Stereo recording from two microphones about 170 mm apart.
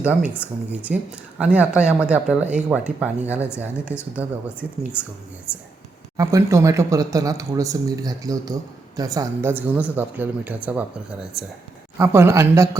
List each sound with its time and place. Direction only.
0.0 s speech: 10° right (ahead or behind)
6.1 s speech: 20° right (ahead or behind)
11.9 s speech: 15° right (ahead or behind)